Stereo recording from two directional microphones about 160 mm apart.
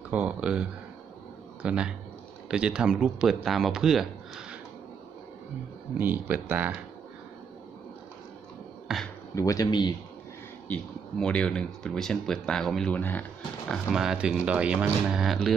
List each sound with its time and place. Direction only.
0.1 s speech: 10° right (ahead or behind)
5.9 s speech: 10° right (ahead or behind)
8.8 s a sound: centre (ahead or behind)
9.3 s speech: 20° left (ahead or behind)
10.7 s speech: 5° left (ahead or behind)